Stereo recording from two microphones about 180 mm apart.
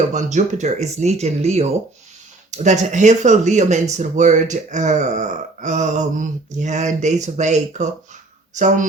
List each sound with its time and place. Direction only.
0.1 s a woman's voice: 40° right (ahead or behind)